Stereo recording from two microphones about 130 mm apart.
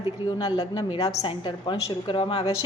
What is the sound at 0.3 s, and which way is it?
A woman's voice, 30° left (ahead or behind).